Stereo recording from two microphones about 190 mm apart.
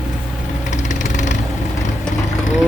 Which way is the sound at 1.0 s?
40° left (ahead or behind).